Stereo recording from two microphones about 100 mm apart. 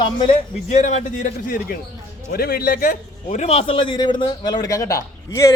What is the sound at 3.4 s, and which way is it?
A man's voice, 75° left (ahead or behind).